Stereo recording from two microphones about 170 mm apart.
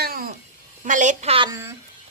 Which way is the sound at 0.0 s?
60° right (ahead or behind).